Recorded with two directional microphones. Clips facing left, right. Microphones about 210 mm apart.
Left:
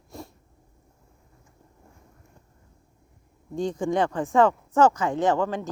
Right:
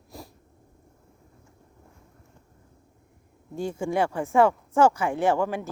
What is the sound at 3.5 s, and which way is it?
Speech, 10° right (ahead or behind).